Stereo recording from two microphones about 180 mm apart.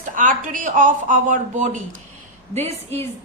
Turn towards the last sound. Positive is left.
turn(degrees=-35)  # may be behind; listen again after turning